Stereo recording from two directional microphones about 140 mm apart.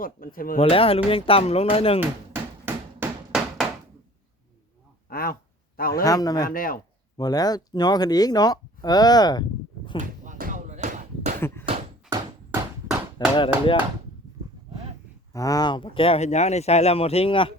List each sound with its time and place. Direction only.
0.3 s speech: 90° left
0.6 s speech: 45° left (ahead or behind)
2.0 s hammer: 15° right (ahead or behind)
5.0 s a sound: 90° left
6.1 s speech: 25° left (ahead or behind)
6.5 s speech: 90° left
7.2 s speech: 30° left (ahead or behind)
10.0 s bouncing: 75° right (ahead or behind); by 11.3 s 55° right (ahead or behind)
11.3 s door: 15° left (ahead or behind)
13.1 s speech: 35° left (ahead or behind)
15.3 s speech: 25° left (ahead or behind)